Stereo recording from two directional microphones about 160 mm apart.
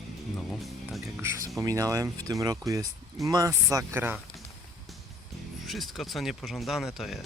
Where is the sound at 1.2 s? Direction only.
15° right (ahead or behind).